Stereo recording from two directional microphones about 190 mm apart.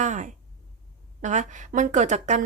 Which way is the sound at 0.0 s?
40° right (ahead or behind).